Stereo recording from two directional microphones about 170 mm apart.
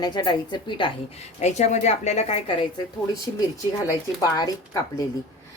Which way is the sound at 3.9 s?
20° left (ahead or behind).